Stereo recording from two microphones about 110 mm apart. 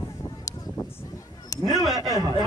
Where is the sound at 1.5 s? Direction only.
30° left (ahead or behind).